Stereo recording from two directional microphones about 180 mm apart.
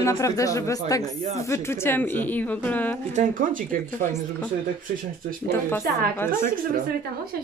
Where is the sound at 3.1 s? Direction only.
45° right (ahead or behind).